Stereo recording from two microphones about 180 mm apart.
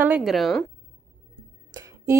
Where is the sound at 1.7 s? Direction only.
15° right (ahead or behind).